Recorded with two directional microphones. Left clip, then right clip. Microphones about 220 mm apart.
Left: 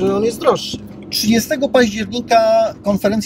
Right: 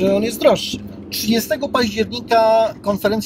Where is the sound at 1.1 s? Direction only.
20° left (ahead or behind).